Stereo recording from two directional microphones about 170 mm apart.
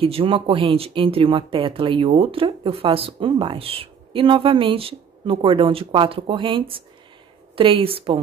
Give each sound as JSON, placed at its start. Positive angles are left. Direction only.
{"t": 0.0, "sound": "speech", "side_deg": -35}